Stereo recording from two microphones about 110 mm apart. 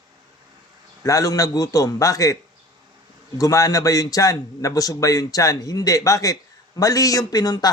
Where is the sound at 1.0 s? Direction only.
30° left (ahead or behind).